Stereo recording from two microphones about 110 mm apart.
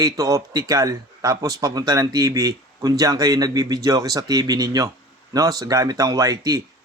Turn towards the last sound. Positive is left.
turn(degrees=-35)  # may be behind; listen again after turning